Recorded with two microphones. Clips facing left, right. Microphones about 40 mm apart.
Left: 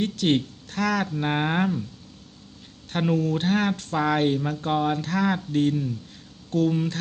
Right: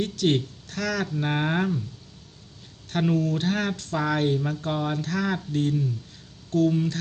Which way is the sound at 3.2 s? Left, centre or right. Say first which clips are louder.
Left 2 dB; left.